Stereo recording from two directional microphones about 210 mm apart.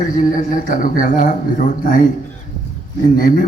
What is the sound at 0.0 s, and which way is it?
Speech, 40° left (ahead or behind).